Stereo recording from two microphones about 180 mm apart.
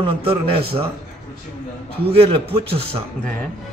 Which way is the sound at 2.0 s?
30° right (ahead or behind).